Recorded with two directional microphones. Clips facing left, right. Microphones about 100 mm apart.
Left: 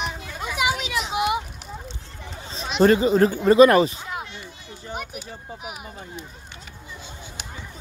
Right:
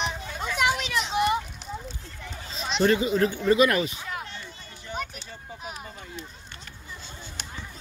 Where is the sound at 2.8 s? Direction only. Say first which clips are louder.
Left 6 dB; 40° left (ahead or behind).